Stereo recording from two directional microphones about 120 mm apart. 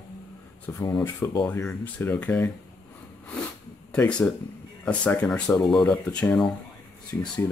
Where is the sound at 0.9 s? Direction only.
20° left (ahead or behind).